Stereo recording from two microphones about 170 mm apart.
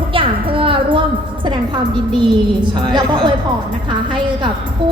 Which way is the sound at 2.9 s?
25° right (ahead or behind).